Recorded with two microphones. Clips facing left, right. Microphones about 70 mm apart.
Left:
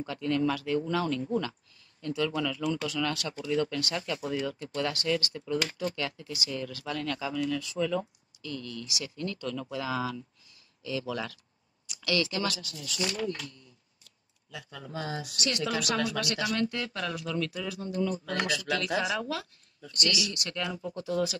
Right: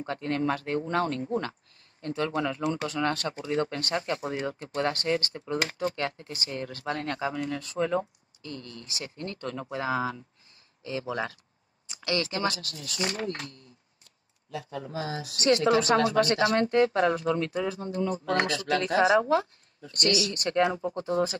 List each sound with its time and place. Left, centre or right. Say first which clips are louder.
0.0 s speech: even; right
1.2 s speech: even; right
15.3 s speech: right 10 dB; right